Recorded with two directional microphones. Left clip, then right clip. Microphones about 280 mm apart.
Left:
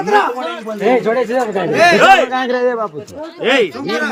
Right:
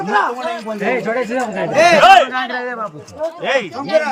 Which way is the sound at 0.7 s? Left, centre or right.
Centre.